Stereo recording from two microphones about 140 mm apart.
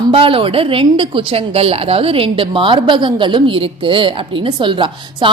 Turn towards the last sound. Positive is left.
turn(degrees=-35)  # may be behind; listen again after turning